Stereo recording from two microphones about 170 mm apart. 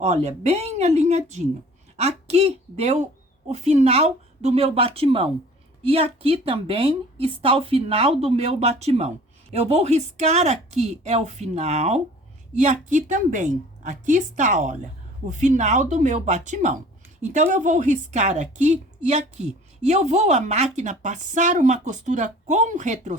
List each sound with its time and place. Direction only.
0.0 s a woman's voice: 40° right (ahead or behind)